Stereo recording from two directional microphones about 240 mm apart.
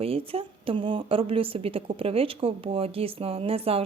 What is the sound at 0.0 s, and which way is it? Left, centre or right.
A woman's voice, right.